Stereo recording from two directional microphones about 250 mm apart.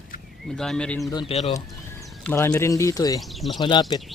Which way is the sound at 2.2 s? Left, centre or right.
Centre.